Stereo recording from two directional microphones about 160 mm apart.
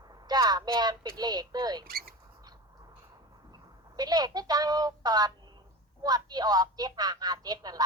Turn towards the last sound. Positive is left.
turn(degrees=-25)  # may be behind; listen again after turning